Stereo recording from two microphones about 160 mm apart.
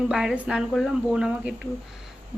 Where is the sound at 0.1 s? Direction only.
5° right (ahead or behind).